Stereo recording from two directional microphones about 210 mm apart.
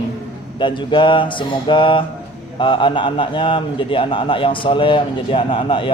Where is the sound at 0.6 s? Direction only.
20° left (ahead or behind).